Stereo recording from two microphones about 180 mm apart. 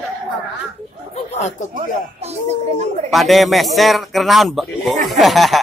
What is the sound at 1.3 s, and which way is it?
Speech, 40° left (ahead or behind).